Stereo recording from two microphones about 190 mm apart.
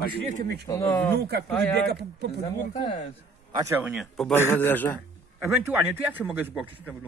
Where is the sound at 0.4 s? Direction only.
55° right (ahead or behind).